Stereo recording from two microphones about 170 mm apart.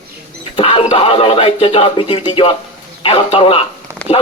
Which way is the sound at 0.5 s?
35° left (ahead or behind).